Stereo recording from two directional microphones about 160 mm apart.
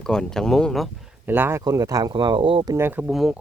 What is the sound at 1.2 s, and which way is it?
Speech, 15° right (ahead or behind).